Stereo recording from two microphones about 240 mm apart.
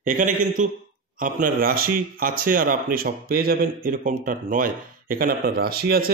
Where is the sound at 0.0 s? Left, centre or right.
Right.